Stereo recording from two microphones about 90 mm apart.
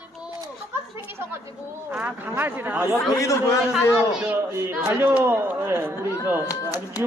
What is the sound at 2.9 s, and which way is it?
Speech, 35° left (ahead or behind).